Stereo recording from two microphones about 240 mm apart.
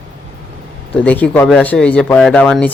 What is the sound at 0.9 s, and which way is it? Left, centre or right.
A man's voice, centre.